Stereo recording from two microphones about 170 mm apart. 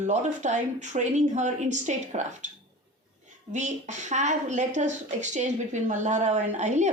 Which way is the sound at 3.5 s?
45° right (ahead or behind).